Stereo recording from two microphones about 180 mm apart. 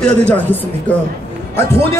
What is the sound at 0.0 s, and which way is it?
A man's voice, 10° left (ahead or behind).